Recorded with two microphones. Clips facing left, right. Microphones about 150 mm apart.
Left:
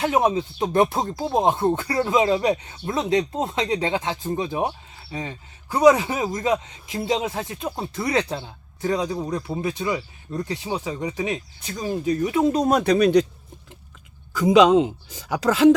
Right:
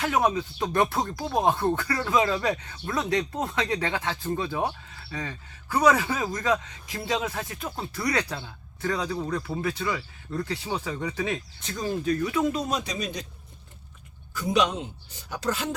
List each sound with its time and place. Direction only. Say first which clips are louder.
0.0 s speech: left 4 dB; 25° left (ahead or behind)
12.5 s speech: left 11 dB; 55° left (ahead or behind)
14.3 s speech: left 10 dB; 90° left